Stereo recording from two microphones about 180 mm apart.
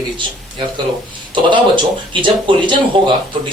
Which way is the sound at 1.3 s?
25° right (ahead or behind).